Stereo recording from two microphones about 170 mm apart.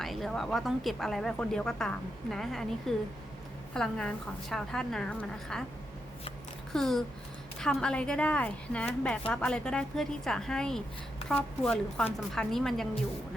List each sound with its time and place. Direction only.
0.0 s speech: centre (ahead or behind)
6.7 s speech: centre (ahead or behind)